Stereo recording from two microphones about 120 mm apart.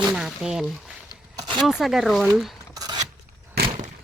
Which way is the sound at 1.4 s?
40° right (ahead or behind).